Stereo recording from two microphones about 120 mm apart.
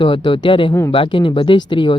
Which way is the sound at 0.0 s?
45° left (ahead or behind).